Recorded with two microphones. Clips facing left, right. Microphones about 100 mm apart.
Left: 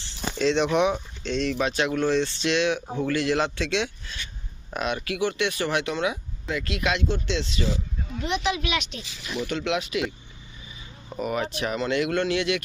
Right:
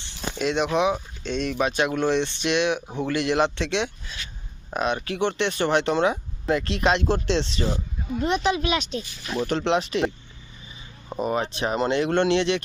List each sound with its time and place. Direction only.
0.0 s a sound: 10° right (ahead or behind)
0.8 s speech: 10° right (ahead or behind); by 10.1 s 35° right (ahead or behind)
11.1 s speech: 30° right (ahead or behind)